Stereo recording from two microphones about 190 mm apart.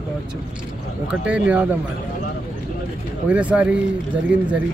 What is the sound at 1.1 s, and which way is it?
Speech, 5° right (ahead or behind).